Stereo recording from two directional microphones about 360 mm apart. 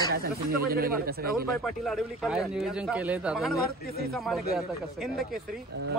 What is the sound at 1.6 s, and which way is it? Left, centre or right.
A man's voice, centre.